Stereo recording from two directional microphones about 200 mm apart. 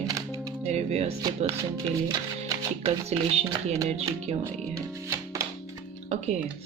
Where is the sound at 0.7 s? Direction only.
30° right (ahead or behind).